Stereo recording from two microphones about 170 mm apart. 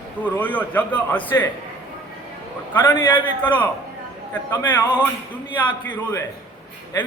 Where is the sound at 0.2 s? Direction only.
10° left (ahead or behind).